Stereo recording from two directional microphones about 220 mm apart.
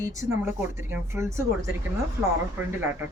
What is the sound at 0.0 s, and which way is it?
Speech, 15° right (ahead or behind).